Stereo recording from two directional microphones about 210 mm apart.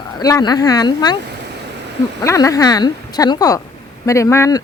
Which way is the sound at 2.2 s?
15° left (ahead or behind).